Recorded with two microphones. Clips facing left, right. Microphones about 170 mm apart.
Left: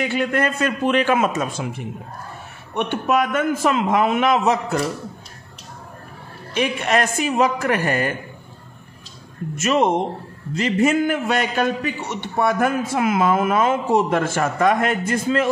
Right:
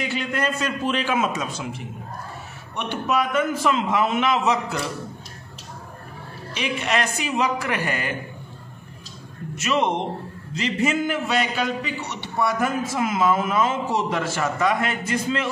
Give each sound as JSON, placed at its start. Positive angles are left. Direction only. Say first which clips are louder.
{"t": 0.0, "sound": "a man's voice", "louder": "left 5 dB", "side_deg": 55}
{"t": 6.5, "sound": "a man's voice", "louder": "left 5 dB", "side_deg": 50}
{"t": 9.6, "sound": "a man's voice", "louder": "left 4 dB", "side_deg": 45}